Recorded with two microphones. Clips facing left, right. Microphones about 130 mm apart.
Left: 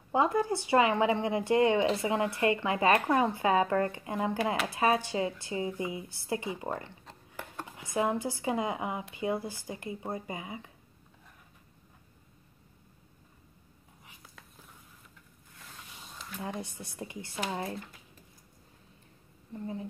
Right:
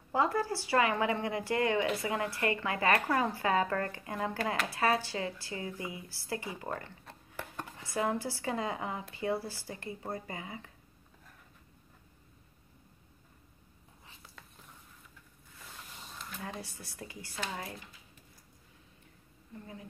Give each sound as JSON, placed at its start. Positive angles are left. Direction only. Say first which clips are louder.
{"t": 0.1, "sound": "a woman's voice", "louder": "left 3 dB", "side_deg": 20}
{"t": 15.6, "sound": "a sound", "louder": "even", "side_deg": 0}
{"t": 16.3, "sound": "a woman's voice", "louder": "left 6 dB", "side_deg": 20}
{"t": 19.5, "sound": "a woman's voice", "louder": "left 9 dB", "side_deg": 30}